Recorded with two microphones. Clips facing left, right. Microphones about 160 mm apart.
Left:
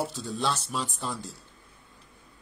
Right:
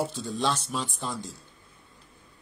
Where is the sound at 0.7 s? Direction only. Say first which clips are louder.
Even; 10° right (ahead or behind).